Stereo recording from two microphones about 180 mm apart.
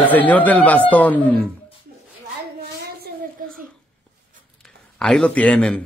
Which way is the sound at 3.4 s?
50° right (ahead or behind).